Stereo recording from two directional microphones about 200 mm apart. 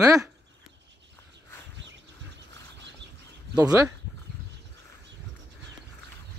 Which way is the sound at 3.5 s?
15° right (ahead or behind).